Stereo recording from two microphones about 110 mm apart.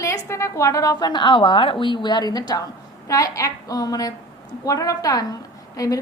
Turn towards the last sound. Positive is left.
turn(degrees=30)  # may be behind; listen again after turning